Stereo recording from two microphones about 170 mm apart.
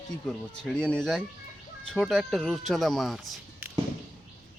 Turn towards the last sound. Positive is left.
turn(degrees=0)  # may be behind; listen again after turning